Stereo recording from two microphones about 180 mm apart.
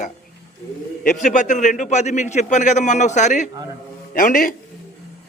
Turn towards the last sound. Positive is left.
turn(degrees=50)  # may be behind; listen again after turning